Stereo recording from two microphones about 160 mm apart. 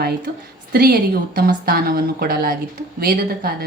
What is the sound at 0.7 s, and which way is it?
A woman's voice, 70° right (ahead or behind).